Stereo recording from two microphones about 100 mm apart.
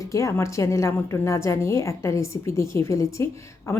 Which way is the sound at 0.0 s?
30° left (ahead or behind).